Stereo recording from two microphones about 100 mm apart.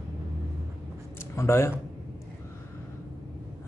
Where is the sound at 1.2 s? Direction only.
25° left (ahead or behind).